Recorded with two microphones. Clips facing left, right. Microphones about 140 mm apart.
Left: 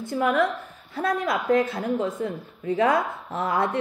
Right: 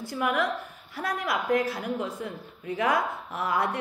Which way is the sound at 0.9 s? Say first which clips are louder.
Left 5 dB; 25° left (ahead or behind).